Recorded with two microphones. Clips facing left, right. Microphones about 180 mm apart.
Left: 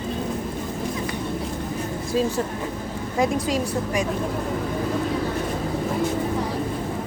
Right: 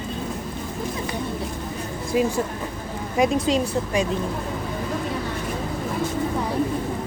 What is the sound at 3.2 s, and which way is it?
Speech, 25° right (ahead or behind).